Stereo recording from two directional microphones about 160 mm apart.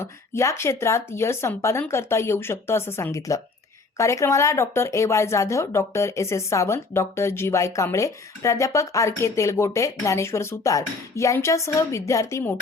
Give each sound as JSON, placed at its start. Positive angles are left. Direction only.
{"t": 0.0, "sound": "speech", "side_deg": 15}